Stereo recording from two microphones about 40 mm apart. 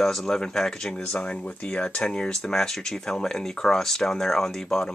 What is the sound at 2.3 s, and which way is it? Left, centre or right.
Speech, centre.